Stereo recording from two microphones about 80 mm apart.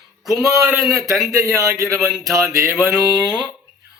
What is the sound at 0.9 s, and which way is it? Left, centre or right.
Speech, right.